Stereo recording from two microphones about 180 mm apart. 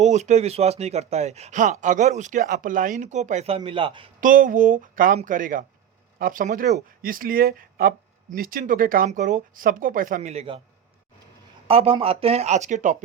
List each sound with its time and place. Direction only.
0.0 s speech: 40° right (ahead or behind)
4.2 s speech: 50° right (ahead or behind); by 10.6 s 30° right (ahead or behind)
11.7 s speech: 30° right (ahead or behind)